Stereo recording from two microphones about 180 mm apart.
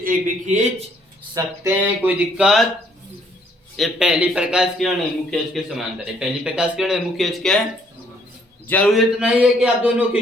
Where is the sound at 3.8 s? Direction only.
5° right (ahead or behind).